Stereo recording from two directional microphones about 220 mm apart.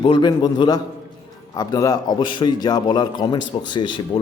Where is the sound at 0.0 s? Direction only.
20° left (ahead or behind).